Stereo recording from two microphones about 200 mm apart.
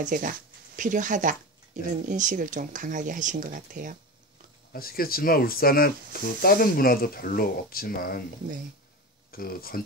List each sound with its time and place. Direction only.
0.0 s speech: 45° right (ahead or behind)
4.7 s speech: 45° left (ahead or behind)
9.3 s speech: 50° left (ahead or behind)